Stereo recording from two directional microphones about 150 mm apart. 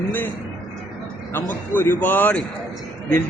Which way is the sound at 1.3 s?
15° left (ahead or behind).